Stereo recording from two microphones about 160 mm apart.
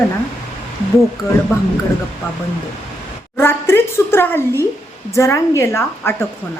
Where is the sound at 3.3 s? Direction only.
15° left (ahead or behind).